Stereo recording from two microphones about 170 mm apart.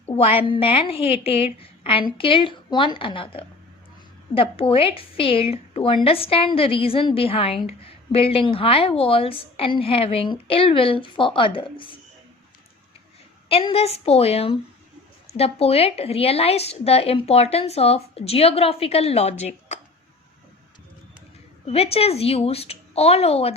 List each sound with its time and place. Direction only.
0.0 s a woman's voice: 35° left (ahead or behind)
13.5 s a woman's voice: 35° left (ahead or behind)
21.7 s a woman's voice: 35° left (ahead or behind)